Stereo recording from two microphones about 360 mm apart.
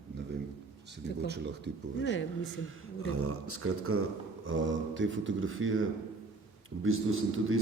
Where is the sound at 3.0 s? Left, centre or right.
Right.